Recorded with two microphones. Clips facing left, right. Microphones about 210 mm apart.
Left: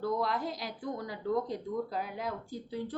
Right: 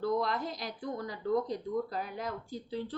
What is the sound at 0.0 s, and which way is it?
Speech, 10° left (ahead or behind).